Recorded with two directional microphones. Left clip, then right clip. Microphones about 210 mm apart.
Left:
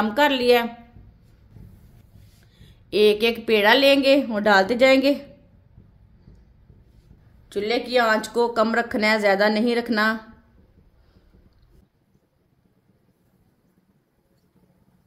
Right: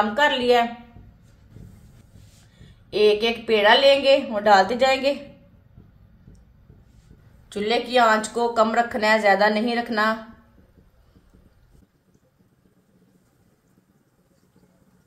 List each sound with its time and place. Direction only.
0.0 s speech: 45° left (ahead or behind)
2.6 s speech: 50° left (ahead or behind)
7.4 s speech: 45° left (ahead or behind)